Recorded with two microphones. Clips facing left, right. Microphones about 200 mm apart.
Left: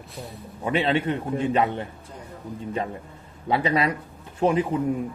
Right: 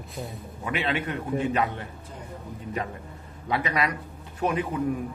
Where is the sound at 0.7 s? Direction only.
30° left (ahead or behind).